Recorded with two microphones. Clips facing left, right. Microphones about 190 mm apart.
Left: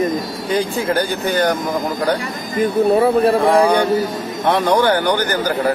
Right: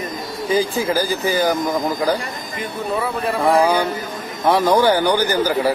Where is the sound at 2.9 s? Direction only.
40° left (ahead or behind).